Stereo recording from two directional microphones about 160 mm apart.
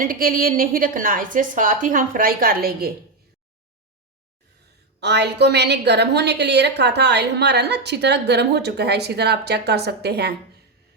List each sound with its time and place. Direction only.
0.0 s a woman's voice: 60° right (ahead or behind)
4.9 s a woman's voice: 90° right